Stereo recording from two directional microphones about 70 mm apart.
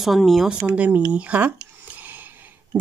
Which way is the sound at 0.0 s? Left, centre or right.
Centre.